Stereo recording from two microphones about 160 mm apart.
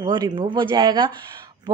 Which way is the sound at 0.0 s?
30° right (ahead or behind).